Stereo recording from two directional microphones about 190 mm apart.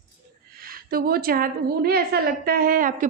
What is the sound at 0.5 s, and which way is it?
A woman's voice, 50° right (ahead or behind).